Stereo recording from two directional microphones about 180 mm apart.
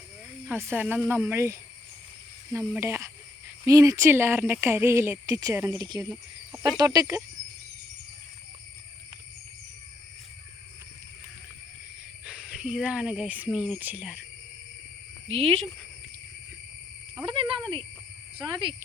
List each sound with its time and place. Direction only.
0.4 s speech: 10° right (ahead or behind)
6.0 s speech: 5° right (ahead or behind)
6.6 s speech: 20° right (ahead or behind)
12.2 s speech: 5° right (ahead or behind)
15.3 s speech: 30° right (ahead or behind)
17.2 s a sound: 30° right (ahead or behind)
18.3 s speech: 25° right (ahead or behind)